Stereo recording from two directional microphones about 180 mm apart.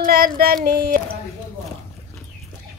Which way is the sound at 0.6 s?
55° right (ahead or behind).